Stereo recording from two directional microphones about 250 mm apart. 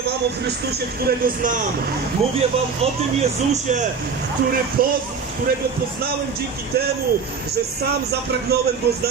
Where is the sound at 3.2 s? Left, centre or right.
Right.